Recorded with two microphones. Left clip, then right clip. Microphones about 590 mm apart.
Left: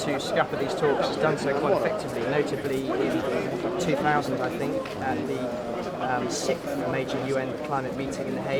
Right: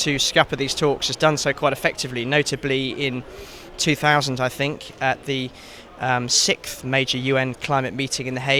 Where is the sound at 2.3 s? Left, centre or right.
Right.